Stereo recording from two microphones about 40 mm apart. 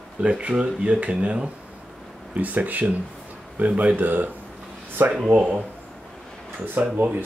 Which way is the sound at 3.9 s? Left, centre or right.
Right.